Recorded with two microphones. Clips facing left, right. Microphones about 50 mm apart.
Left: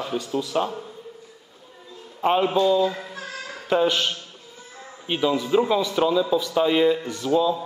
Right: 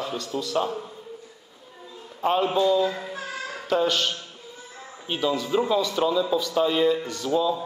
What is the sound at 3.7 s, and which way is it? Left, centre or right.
Speech, centre.